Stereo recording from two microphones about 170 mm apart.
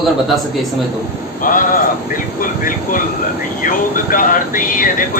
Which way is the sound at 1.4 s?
55° left (ahead or behind).